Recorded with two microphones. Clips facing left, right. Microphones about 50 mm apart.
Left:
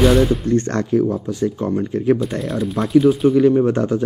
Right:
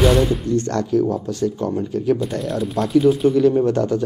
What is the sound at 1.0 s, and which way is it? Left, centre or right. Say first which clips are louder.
Speech: left 1 dB; centre.